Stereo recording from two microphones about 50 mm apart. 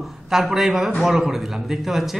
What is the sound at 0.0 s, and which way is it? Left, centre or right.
A man's voice, centre.